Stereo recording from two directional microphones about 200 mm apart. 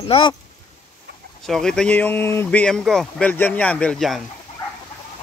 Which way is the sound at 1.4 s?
Centre (ahead or behind).